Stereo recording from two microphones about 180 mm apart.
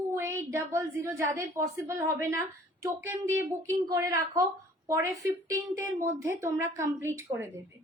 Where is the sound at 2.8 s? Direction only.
15° right (ahead or behind).